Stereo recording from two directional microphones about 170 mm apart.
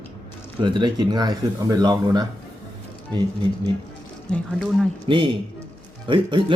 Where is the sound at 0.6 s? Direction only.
25° right (ahead or behind).